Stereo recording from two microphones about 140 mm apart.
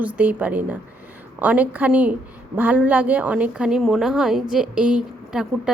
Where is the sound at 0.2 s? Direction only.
10° right (ahead or behind).